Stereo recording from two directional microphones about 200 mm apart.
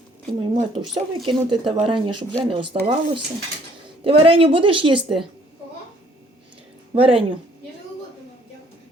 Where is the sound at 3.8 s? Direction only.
25° right (ahead or behind).